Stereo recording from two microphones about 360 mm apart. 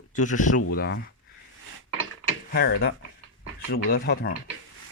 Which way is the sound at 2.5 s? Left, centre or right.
Left.